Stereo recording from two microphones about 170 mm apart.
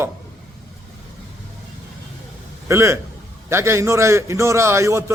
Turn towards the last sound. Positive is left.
turn(degrees=-15)  # may be behind; listen again after turning